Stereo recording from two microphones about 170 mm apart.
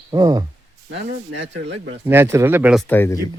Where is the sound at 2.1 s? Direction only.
15° right (ahead or behind).